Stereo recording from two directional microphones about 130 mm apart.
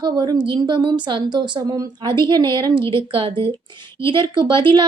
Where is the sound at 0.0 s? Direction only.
35° right (ahead or behind).